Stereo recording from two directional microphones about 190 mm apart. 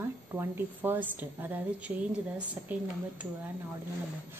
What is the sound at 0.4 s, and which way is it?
A woman's voice, 10° right (ahead or behind).